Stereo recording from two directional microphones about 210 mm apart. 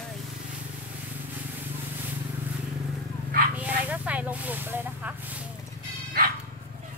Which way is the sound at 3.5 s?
5° right (ahead or behind).